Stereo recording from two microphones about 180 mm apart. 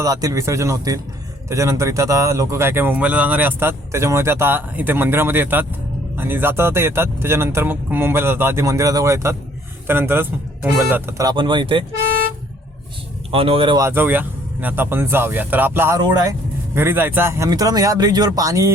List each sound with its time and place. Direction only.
0.0 s speech: 20° right (ahead or behind)
13.3 s speech: 30° right (ahead or behind)
13.7 s speech: 15° right (ahead or behind)
16.0 s speech: 20° right (ahead or behind)
16.7 s speech: 10° right (ahead or behind)